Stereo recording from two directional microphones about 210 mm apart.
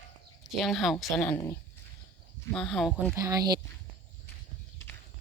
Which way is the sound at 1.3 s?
15° left (ahead or behind).